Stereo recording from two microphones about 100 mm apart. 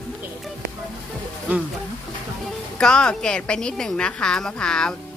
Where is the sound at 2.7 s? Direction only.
10° left (ahead or behind).